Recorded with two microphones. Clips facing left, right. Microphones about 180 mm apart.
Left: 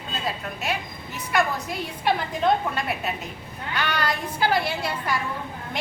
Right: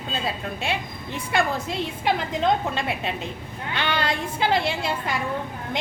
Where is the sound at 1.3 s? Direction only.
25° right (ahead or behind).